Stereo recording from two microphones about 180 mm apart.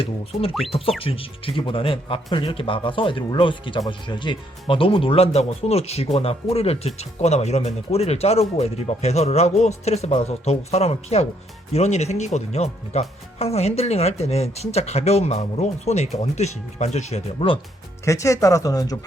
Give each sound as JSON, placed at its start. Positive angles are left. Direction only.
{"t": 0.7, "sound": "speech", "side_deg": 30}
{"t": 18.0, "sound": "speech", "side_deg": 15}